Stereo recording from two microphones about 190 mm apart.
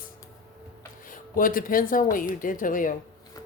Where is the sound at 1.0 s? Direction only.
45° left (ahead or behind).